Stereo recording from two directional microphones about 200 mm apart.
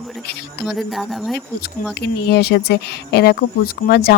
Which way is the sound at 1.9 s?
55° left (ahead or behind).